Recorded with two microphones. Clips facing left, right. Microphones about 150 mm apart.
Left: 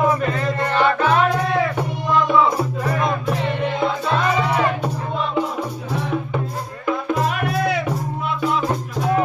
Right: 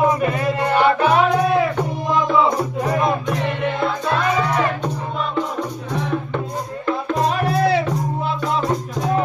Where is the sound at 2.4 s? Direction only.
20° right (ahead or behind).